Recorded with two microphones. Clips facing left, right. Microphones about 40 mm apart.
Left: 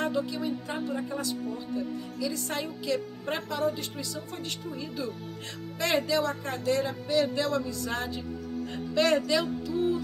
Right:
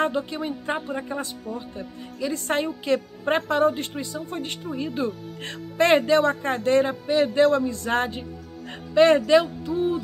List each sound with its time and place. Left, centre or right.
0.0 s speech: right
8.9 s speech: right